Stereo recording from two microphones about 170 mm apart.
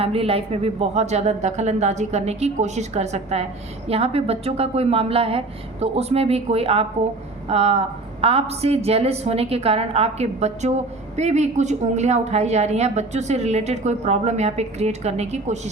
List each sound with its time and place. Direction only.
0.0 s a woman's voice: 35° right (ahead or behind)